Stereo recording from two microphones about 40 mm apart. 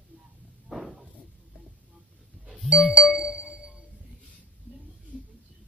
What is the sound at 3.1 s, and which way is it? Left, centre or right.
Music, centre.